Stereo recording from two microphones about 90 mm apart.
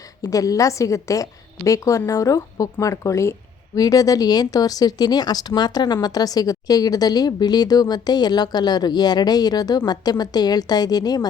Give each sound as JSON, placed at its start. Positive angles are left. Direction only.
{"t": 0.3, "sound": "a woman's voice", "side_deg": 40}